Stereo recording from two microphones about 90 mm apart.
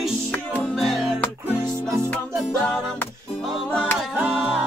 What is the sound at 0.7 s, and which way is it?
Music, centre (ahead or behind).